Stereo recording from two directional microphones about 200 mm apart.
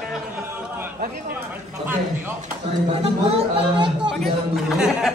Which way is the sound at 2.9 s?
30° right (ahead or behind).